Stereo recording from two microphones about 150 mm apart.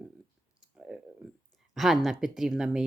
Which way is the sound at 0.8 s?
5° right (ahead or behind).